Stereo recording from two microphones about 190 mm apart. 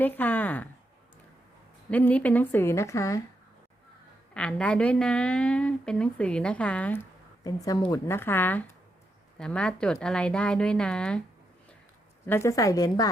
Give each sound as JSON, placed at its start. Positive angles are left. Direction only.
{"t": 0.0, "sound": "a woman's voice", "side_deg": 10}
{"t": 1.9, "sound": "a woman's voice", "side_deg": 10}
{"t": 4.4, "sound": "a woman's voice", "side_deg": 5}
{"t": 12.2, "sound": "a woman's voice", "side_deg": 15}